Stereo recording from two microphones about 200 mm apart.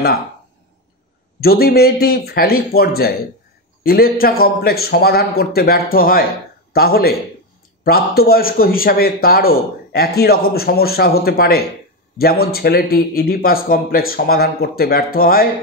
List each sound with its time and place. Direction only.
1.4 s a man's voice: 50° left (ahead or behind)